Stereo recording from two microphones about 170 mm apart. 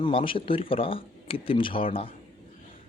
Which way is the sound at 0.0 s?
30° left (ahead or behind).